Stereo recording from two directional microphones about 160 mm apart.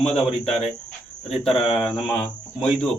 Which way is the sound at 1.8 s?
5° left (ahead or behind).